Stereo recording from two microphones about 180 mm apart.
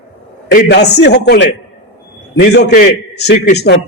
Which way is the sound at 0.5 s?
70° left (ahead or behind).